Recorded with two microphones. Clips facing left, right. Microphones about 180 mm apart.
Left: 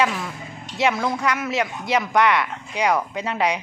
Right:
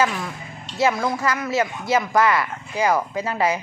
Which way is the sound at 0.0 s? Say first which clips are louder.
Even; centre (ahead or behind).